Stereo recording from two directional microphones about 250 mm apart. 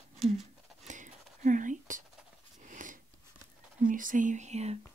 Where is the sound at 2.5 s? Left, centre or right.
Right.